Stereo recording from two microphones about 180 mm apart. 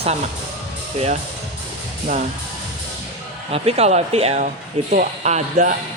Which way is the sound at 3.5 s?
35° right (ahead or behind).